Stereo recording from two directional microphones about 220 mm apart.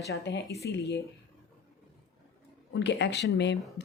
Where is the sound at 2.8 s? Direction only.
50° left (ahead or behind).